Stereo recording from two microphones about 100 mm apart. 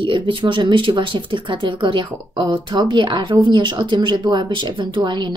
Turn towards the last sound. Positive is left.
turn(degrees=-50)  # may be behind; listen again after turning